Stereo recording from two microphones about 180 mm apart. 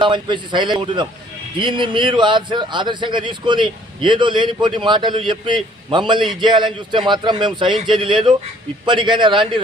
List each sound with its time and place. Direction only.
0.0 s a man's voice: 25° right (ahead or behind)